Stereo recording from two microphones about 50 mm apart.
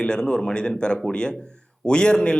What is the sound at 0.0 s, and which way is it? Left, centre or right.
Speech, centre.